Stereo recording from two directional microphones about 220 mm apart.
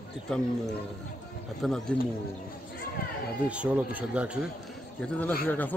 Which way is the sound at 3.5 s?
5° right (ahead or behind).